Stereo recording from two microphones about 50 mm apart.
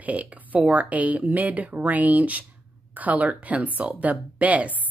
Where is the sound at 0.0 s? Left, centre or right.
Right.